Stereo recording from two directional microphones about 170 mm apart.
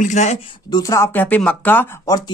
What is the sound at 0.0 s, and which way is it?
Speech, 45° left (ahead or behind).